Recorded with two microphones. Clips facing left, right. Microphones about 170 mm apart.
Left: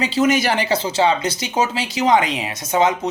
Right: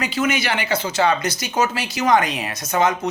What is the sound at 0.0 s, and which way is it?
Speech, 35° left (ahead or behind).